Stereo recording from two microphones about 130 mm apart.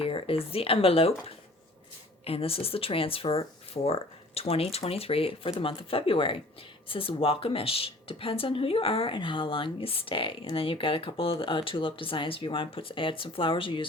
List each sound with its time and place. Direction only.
0.0 s a woman's voice: 45° left (ahead or behind)
2.2 s a woman's voice: 45° left (ahead or behind)